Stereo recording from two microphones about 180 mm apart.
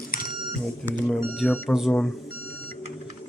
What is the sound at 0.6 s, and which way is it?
Speech, centre (ahead or behind).